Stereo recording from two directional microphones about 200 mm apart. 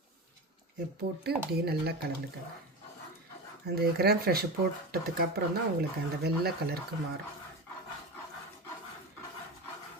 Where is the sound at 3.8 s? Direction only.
50° right (ahead or behind).